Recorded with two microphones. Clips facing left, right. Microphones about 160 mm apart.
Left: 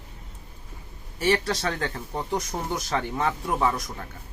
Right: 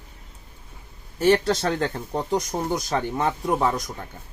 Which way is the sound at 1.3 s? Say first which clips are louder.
Right 4 dB; 25° right (ahead or behind).